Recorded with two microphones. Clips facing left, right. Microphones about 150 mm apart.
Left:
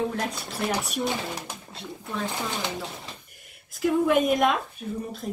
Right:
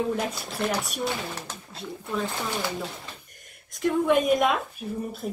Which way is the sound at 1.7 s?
Centre (ahead or behind).